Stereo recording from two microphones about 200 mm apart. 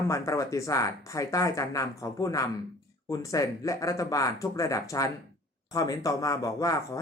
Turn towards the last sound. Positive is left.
turn(degrees=15)  # may be behind; listen again after turning